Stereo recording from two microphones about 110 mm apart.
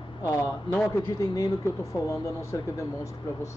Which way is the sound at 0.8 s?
25° left (ahead or behind).